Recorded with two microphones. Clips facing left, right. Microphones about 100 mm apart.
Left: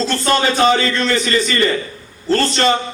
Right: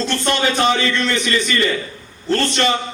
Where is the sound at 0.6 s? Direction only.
35° left (ahead or behind).